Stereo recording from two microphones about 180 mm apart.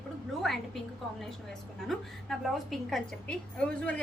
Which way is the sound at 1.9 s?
Centre (ahead or behind).